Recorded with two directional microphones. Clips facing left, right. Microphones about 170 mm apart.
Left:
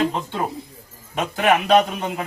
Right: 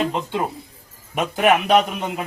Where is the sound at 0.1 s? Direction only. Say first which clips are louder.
Right 1 dB; 15° right (ahead or behind).